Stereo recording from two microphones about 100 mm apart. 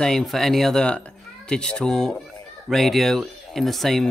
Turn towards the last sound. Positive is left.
turn(degrees=0)  # may be behind; listen again after turning